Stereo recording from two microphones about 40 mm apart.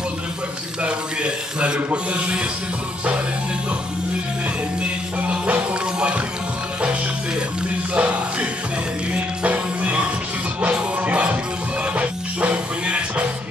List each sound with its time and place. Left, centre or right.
0.8 s a sound: right
2.1 s speech: right
5.2 s music: right
5.9 s music: right
7.9 s music: right